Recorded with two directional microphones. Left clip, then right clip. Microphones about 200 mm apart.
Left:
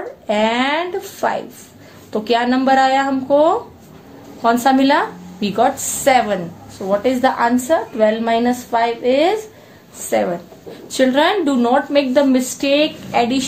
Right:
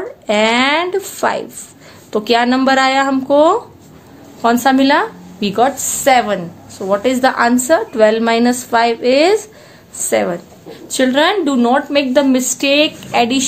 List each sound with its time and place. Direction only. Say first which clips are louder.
0.3 s a woman's voice: right 4 dB; 35° right (ahead or behind)
10.9 s a woman's voice: right 1 dB; 25° right (ahead or behind)